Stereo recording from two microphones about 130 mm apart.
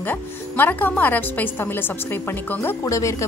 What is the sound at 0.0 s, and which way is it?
A woman's voice, 15° left (ahead or behind).